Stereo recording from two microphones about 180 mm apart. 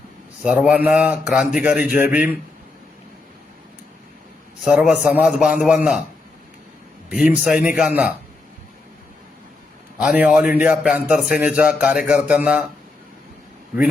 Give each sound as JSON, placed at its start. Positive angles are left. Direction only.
{"t": 0.4, "sound": "a man's voice", "side_deg": -5}
{"t": 4.6, "sound": "a man's voice", "side_deg": 0}
{"t": 7.1, "sound": "speech", "side_deg": -10}
{"t": 10.0, "sound": "a man's voice", "side_deg": -5}